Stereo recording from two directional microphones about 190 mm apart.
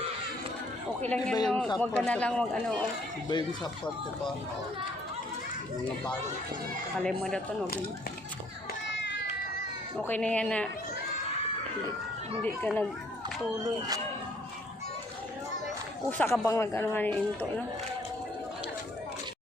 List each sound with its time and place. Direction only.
1.0 s speech: 5° left (ahead or behind)
3.2 s speech: 20° left (ahead or behind)
7.0 s speech: 5° left (ahead or behind)
10.1 s speech: 5° left (ahead or behind)
12.4 s speech: 5° left (ahead or behind)
15.6 s a sound: 10° left (ahead or behind)
16.5 s speech: 15° left (ahead or behind)